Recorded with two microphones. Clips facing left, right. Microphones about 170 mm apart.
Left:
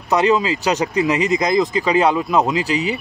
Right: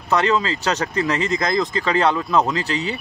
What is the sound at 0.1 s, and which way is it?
Speech, 15° left (ahead or behind).